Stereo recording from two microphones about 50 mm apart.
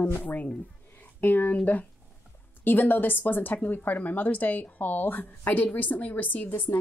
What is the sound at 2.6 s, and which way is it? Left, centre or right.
A woman's voice, left.